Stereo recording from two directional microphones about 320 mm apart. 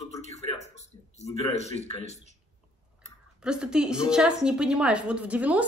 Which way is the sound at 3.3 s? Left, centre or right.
Centre.